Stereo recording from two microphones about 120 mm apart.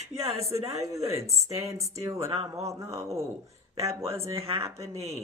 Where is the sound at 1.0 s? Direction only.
60° right (ahead or behind).